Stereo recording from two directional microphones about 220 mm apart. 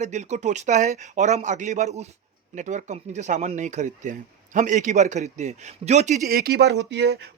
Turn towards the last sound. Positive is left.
turn(degrees=-50)  # may be behind; listen again after turning